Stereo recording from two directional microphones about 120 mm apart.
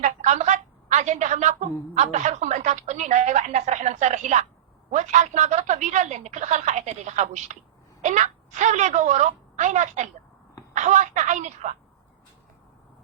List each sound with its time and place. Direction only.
0.0 s telephone: 80° right
1.1 s a woman's voice: 80° right